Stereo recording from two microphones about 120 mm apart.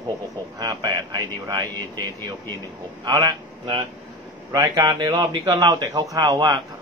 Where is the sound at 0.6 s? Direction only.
30° right (ahead or behind).